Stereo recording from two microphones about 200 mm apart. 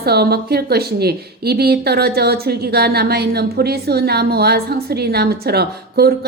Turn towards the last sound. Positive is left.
turn(degrees=-50)  # may be behind; listen again after turning